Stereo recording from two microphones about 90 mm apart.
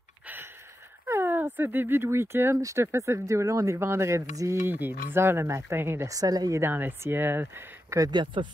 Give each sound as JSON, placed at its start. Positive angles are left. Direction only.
{"t": 1.0, "sound": "speech", "side_deg": -25}
{"t": 6.0, "sound": "speech", "side_deg": -45}
{"t": 6.6, "sound": "speech", "side_deg": -20}
{"t": 8.1, "sound": "speech", "side_deg": -60}